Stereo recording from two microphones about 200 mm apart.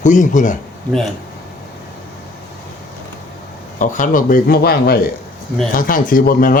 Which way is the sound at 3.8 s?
40° left (ahead or behind).